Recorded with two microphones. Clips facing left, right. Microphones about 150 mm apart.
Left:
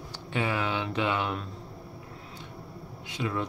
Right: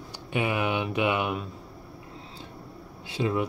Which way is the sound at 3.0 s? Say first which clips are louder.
Right 5 dB; 30° right (ahead or behind).